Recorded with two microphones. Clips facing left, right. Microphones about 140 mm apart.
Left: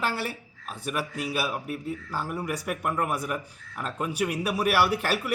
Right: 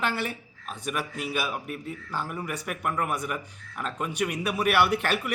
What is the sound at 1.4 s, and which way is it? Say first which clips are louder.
Speech: left 2 dB; centre (ahead or behind).